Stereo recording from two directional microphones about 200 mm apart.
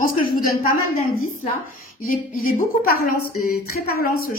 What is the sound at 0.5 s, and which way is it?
Speech, 45° left (ahead or behind).